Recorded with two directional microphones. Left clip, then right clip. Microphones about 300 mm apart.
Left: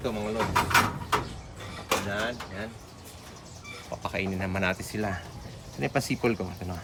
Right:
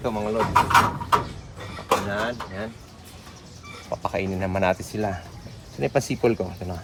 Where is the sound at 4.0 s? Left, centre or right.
Centre.